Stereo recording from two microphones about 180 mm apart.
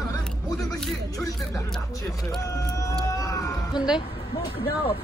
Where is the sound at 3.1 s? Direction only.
20° left (ahead or behind).